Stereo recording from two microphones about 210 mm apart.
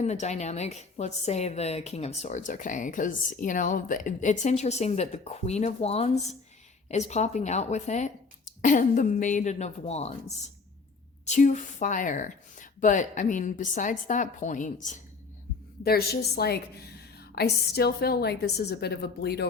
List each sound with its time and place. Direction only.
0.0 s a woman's voice: 35° left (ahead or behind)
15.8 s a woman's voice: 45° left (ahead or behind)